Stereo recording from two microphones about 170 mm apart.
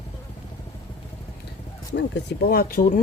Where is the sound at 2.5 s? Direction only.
60° left (ahead or behind).